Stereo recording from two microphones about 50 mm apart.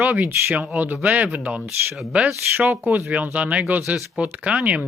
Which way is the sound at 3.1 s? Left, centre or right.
Right.